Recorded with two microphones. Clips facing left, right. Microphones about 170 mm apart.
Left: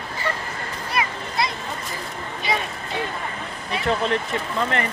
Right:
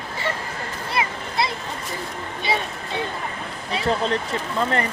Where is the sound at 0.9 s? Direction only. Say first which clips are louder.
Even; 25° right (ahead or behind).